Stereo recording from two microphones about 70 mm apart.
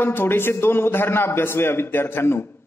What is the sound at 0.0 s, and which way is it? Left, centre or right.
A man's voice, left.